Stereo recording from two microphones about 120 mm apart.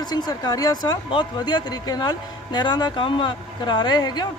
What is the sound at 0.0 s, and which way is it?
Speech, 35° left (ahead or behind).